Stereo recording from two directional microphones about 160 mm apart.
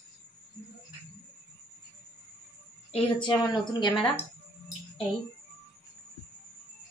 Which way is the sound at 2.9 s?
30° left (ahead or behind).